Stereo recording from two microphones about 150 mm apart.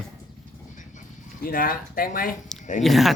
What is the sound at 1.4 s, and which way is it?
Speech, 70° left (ahead or behind).